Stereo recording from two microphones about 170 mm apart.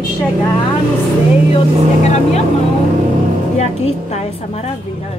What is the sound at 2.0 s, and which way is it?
Speech, 40° left (ahead or behind).